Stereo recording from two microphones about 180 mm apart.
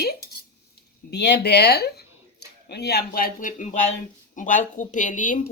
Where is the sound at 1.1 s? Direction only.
70° left (ahead or behind).